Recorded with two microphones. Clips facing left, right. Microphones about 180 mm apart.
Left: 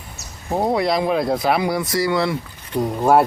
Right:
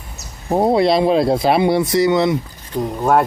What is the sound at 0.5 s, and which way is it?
Speech, 25° right (ahead or behind).